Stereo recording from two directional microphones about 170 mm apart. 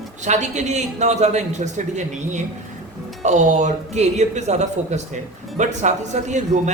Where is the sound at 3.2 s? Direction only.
45° right (ahead or behind).